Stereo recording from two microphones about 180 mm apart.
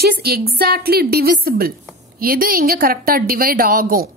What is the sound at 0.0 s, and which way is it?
A woman's voice, 60° right (ahead or behind).